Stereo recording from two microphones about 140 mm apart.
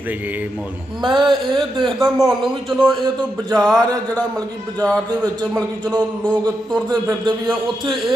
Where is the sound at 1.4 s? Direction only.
35° right (ahead or behind).